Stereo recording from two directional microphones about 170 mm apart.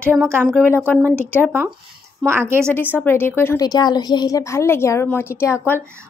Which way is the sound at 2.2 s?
15° right (ahead or behind).